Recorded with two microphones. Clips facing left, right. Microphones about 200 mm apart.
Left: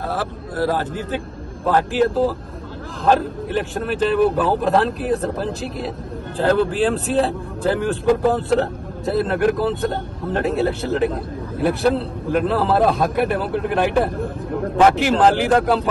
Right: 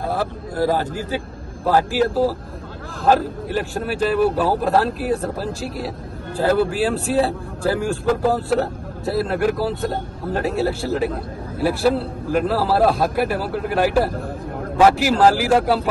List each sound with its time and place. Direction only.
1.7 s a man's voice: 5° right (ahead or behind)